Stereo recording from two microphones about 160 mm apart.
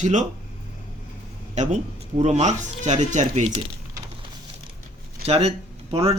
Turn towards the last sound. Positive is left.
turn(degrees=-40)  # may be behind; listen again after turning